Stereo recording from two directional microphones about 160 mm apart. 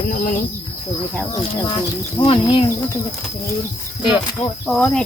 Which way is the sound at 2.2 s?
35° left (ahead or behind).